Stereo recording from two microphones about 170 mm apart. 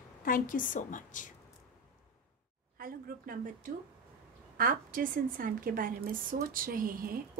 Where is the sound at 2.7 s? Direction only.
55° right (ahead or behind).